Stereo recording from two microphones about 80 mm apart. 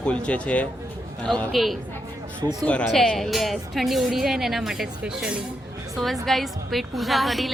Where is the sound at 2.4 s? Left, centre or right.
Right.